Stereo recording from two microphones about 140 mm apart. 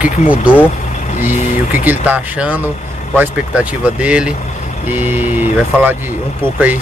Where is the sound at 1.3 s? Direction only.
70° left (ahead or behind).